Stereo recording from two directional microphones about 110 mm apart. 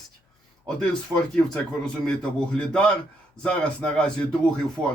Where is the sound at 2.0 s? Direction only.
10° left (ahead or behind).